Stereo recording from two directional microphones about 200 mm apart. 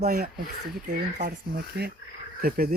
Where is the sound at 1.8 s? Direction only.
55° right (ahead or behind).